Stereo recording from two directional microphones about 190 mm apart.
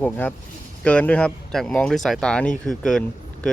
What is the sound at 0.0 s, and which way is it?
Speech, 10° left (ahead or behind).